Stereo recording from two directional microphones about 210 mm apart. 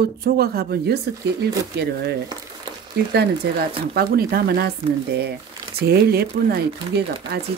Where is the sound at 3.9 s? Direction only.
45° right (ahead or behind).